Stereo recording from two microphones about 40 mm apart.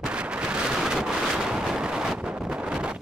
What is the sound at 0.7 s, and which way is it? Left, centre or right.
Wind noise, centre.